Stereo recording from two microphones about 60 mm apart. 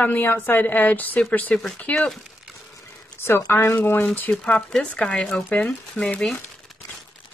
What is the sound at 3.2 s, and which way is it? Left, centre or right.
Speech, left.